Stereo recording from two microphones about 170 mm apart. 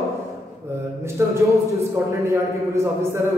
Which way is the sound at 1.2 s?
15° right (ahead or behind).